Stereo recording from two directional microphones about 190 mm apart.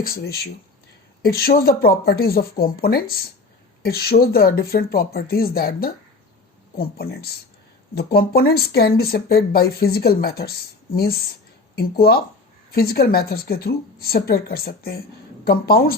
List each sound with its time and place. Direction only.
0.0 s speech: 55° left (ahead or behind)